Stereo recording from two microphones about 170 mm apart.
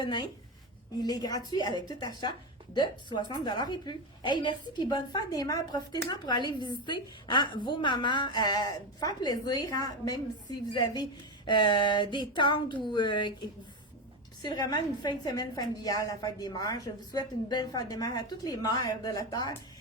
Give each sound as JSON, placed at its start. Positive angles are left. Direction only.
{"t": 0.0, "sound": "a woman's voice", "side_deg": 25}
{"t": 14.4, "sound": "a woman's voice", "side_deg": 25}